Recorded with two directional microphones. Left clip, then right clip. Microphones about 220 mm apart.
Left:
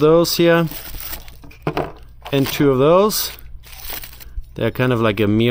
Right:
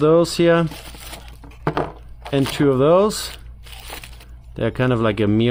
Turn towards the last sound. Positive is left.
turn(degrees=30)  # may be behind; listen again after turning